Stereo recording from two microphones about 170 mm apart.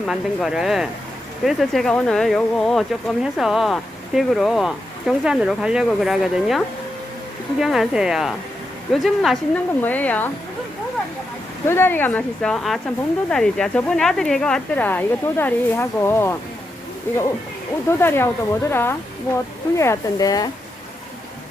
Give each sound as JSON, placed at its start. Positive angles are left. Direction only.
{"t": 0.1, "sound": "speech", "side_deg": 0}
{"t": 11.6, "sound": "speech", "side_deg": 15}